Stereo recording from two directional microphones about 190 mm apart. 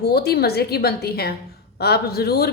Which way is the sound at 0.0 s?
55° left (ahead or behind).